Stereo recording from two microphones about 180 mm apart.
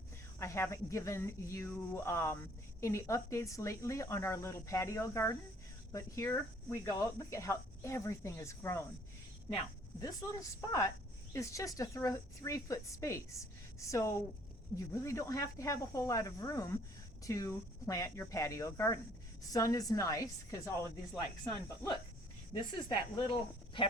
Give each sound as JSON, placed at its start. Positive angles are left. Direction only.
{"t": 0.3, "sound": "speech", "side_deg": 15}
{"t": 10.0, "sound": "a woman's voice", "side_deg": 20}
{"t": 22.7, "sound": "a woman's voice", "side_deg": 25}